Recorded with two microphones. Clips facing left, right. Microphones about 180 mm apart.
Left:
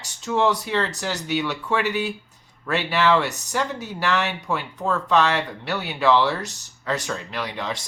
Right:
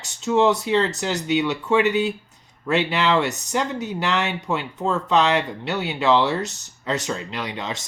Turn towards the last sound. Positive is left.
turn(degrees=-20)  # may be behind; listen again after turning